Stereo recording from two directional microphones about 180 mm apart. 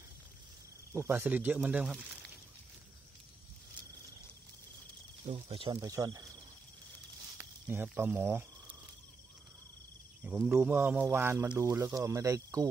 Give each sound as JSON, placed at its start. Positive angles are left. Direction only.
{"t": 0.9, "sound": "speech", "side_deg": -10}
{"t": 5.2, "sound": "speech", "side_deg": -35}
{"t": 7.3, "sound": "snake", "side_deg": -10}
{"t": 10.2, "sound": "speech", "side_deg": -10}